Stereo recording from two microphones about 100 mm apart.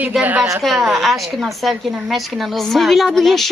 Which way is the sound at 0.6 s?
Centre (ahead or behind).